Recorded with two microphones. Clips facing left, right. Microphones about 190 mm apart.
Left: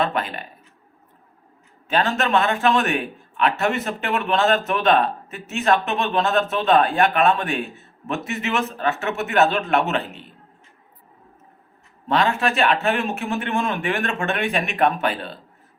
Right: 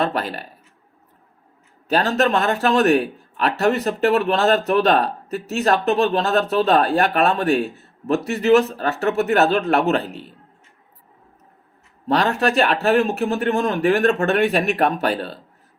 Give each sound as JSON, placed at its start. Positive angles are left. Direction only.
{"t": 0.0, "sound": "speech", "side_deg": -40}
{"t": 1.9, "sound": "speech", "side_deg": -40}
{"t": 12.0, "sound": "speech", "side_deg": -40}
{"t": 12.3, "sound": "speech", "side_deg": 0}
{"t": 12.9, "sound": "speech", "side_deg": -40}
{"t": 15.1, "sound": "speech", "side_deg": 0}